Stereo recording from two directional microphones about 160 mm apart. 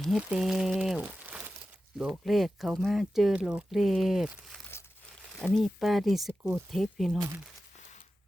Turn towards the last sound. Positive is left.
turn(degrees=0)  # may be behind; listen again after turning